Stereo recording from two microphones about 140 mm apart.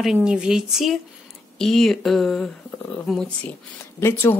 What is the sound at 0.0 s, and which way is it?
Speech, 5° right (ahead or behind).